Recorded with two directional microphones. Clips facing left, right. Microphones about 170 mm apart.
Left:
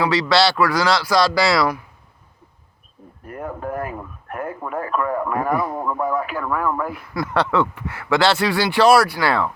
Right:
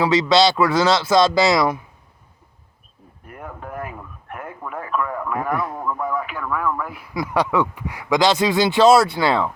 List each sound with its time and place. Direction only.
0.0 s speech: 20° right (ahead or behind)
3.2 s a man's voice: 45° left (ahead or behind)
6.9 s speech: 10° right (ahead or behind)